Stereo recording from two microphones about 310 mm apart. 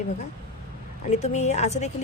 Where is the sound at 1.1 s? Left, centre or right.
Left.